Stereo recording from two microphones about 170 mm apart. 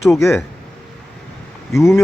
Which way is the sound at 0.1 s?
15° left (ahead or behind).